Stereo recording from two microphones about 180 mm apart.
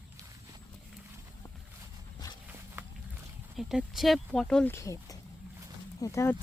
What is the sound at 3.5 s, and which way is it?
Speech, centre (ahead or behind).